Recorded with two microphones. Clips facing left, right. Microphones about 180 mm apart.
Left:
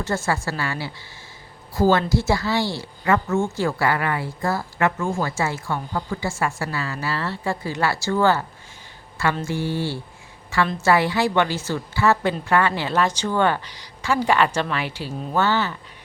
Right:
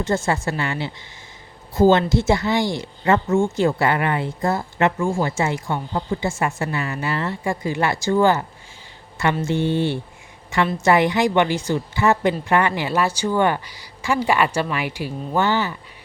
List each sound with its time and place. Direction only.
0.0 s a woman's voice: 20° right (ahead or behind)